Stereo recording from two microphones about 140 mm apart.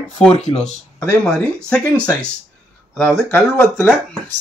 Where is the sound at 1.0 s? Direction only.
5° left (ahead or behind).